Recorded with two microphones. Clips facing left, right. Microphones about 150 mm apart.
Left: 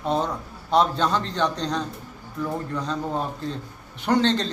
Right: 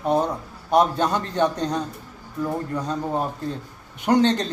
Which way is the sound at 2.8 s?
15° right (ahead or behind).